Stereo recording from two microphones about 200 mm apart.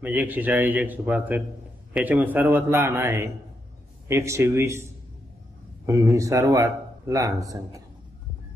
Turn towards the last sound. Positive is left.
turn(degrees=-15)  # may be behind; listen again after turning